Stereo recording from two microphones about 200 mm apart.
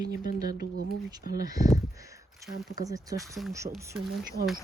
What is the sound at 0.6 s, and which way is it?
Speech, 50° right (ahead or behind).